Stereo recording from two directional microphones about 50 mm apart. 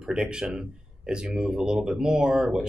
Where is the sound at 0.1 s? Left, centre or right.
Centre.